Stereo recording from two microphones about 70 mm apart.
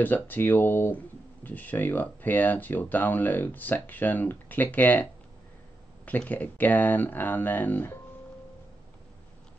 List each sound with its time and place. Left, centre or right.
0.0 s speech: left
6.0 s speech: left